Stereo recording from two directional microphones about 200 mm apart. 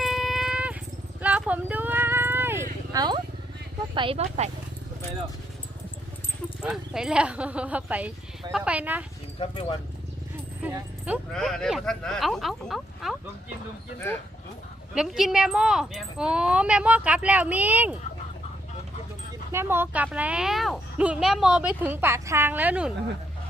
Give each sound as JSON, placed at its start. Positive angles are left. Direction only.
{"t": 0.0, "sound": "a sound", "side_deg": 0}
{"t": 1.2, "sound": "clip-clop", "side_deg": -5}
{"t": 2.9, "sound": "a sound", "side_deg": -20}
{"t": 3.9, "sound": "speech", "side_deg": -25}
{"t": 6.6, "sound": "speech", "side_deg": -5}
{"t": 9.4, "sound": "speech", "side_deg": 25}
{"t": 10.6, "sound": "speech", "side_deg": -5}
{"t": 14.9, "sound": "speech", "side_deg": 0}
{"t": 19.5, "sound": "speech", "side_deg": -10}